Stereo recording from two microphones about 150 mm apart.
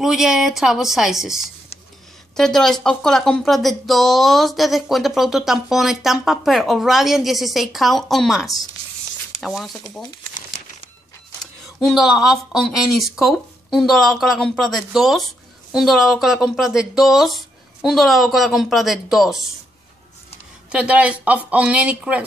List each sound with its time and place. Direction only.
0.0 s speech: 5° right (ahead or behind)
11.8 s speech: centre (ahead or behind)
20.7 s speech: 10° right (ahead or behind)